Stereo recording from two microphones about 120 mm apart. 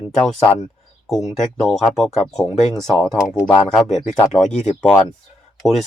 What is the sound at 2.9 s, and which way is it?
Speech, 20° right (ahead or behind).